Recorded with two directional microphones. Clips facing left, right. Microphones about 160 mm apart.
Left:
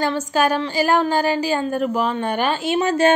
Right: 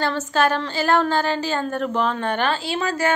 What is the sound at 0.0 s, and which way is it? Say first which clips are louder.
A woman's voice: left 1 dB; 10° left (ahead or behind).